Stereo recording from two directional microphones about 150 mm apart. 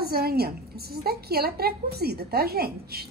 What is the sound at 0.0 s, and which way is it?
A woman's voice, 90° right.